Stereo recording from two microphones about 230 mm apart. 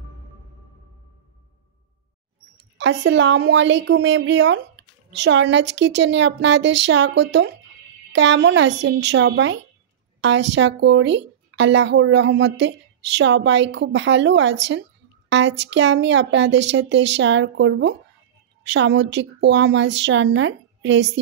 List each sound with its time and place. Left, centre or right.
2.8 s speech: right